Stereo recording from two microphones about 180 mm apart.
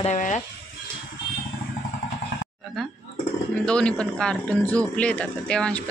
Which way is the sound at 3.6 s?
5° left (ahead or behind).